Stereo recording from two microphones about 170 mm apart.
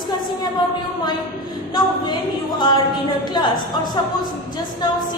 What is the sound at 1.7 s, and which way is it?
A capella, 25° left (ahead or behind).